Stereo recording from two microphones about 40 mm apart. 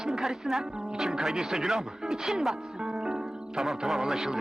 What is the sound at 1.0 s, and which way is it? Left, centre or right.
Speech, centre.